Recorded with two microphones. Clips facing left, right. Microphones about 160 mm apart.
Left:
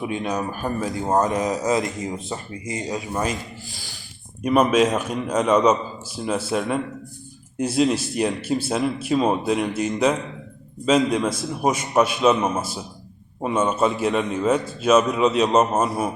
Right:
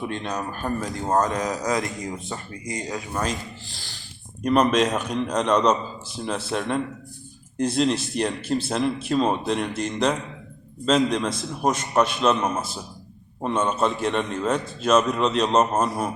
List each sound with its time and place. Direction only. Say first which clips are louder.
0.0 s speech: left 3 dB; 5° left (ahead or behind)
1.6 s speech: left 3 dB; 25° left (ahead or behind)
3.2 s speech: left 1 dB; 5° left (ahead or behind)
4.4 s a man's voice: left 2 dB; 5° left (ahead or behind)